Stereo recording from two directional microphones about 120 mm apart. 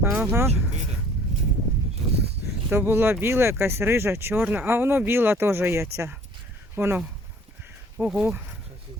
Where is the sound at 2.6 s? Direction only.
20° right (ahead or behind).